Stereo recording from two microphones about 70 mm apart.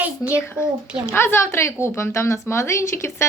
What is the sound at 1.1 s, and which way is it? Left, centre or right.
A woman's voice, left.